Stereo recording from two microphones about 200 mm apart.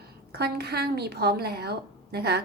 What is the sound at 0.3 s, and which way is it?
A woman's voice, 55° right (ahead or behind).